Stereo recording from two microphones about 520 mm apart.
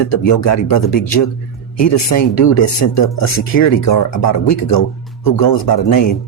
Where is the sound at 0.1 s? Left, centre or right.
Left.